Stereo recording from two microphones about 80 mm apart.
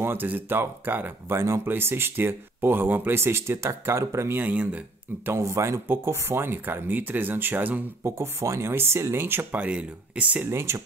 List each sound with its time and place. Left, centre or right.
0.0 s speech: right
5.2 s speech: right
8.2 s speech: right; by 10.5 s centre
10.5 s speech: right